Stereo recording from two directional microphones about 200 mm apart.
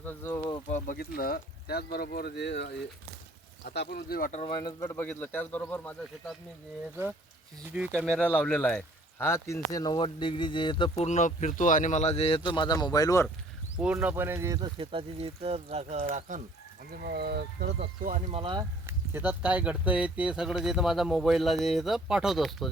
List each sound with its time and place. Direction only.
0.0 s speech: 10° left (ahead or behind)
0.7 s speech: 45° left (ahead or behind)
4.3 s speech: 30° left (ahead or behind)
4.6 s speech: 15° left (ahead or behind)
7.9 s speech: 5° left (ahead or behind)
13.7 s speech: 5° right (ahead or behind); by 16.4 s 35° right (ahead or behind)
16.9 s speech: 55° right (ahead or behind)
18.3 s speech: 25° right (ahead or behind)
18.9 s speech: 10° right (ahead or behind)